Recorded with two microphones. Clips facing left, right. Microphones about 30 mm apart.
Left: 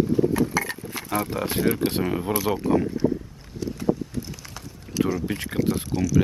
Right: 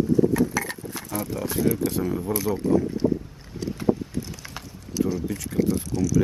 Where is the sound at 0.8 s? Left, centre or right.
Left.